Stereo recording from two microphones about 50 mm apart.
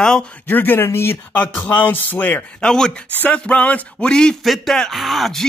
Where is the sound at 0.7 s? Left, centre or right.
Left.